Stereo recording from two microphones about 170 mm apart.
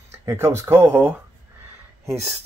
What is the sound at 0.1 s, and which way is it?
Speech, 15° right (ahead or behind).